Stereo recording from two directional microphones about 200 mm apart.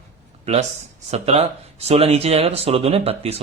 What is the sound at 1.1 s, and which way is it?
Speech, 30° right (ahead or behind).